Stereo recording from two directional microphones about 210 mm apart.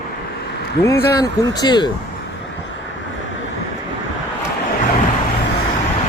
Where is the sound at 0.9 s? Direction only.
15° left (ahead or behind).